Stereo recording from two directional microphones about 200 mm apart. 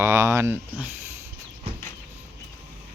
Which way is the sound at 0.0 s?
15° right (ahead or behind).